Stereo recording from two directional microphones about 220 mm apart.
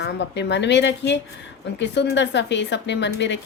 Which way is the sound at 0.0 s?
50° left (ahead or behind).